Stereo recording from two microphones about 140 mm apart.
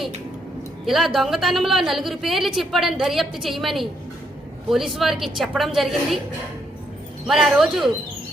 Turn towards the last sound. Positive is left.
turn(degrees=0)  # may be behind; listen again after turning